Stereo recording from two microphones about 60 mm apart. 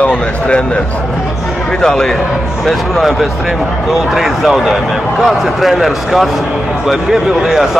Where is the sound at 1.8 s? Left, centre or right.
Centre.